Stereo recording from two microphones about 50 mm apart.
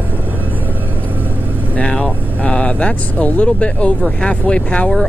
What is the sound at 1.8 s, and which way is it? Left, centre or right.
Speech, left.